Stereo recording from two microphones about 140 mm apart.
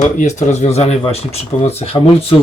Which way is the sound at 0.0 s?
55° left (ahead or behind).